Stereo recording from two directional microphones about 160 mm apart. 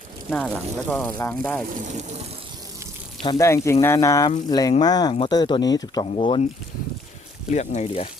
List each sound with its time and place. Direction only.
0.3 s speech: 5° left (ahead or behind)
1.7 s speech: 50° right (ahead or behind)
3.2 s speech: 20° left (ahead or behind)
7.5 s speech: 45° left (ahead or behind)